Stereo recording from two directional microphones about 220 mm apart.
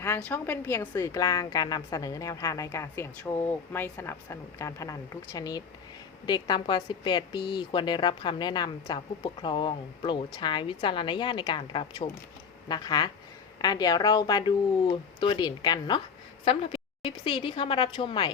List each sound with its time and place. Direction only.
0.0 s a woman's voice: 10° left (ahead or behind)
17.0 s a woman's voice: 25° left (ahead or behind)